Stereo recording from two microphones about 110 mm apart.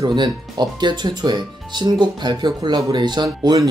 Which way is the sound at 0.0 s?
40° right (ahead or behind).